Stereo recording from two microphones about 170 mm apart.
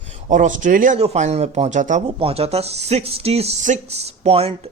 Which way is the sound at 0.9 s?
40° right (ahead or behind).